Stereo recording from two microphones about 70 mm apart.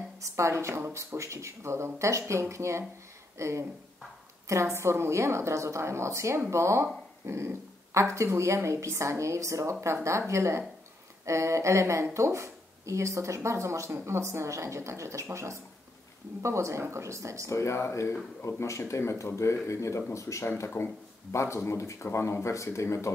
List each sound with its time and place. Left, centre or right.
0.2 s a woman's voice: right
17.5 s speech: left